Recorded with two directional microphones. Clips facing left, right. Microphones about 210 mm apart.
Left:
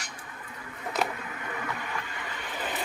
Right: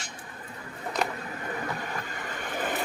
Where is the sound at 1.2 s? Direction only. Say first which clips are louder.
Right 3 dB; 35° right (ahead or behind).